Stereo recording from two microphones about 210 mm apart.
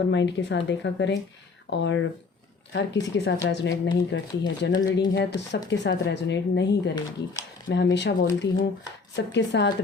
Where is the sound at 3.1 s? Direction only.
65° left (ahead or behind).